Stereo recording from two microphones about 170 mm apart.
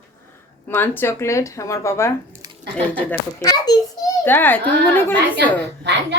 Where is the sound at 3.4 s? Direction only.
20° left (ahead or behind).